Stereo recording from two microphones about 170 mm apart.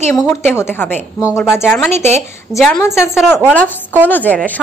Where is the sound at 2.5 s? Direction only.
15° left (ahead or behind).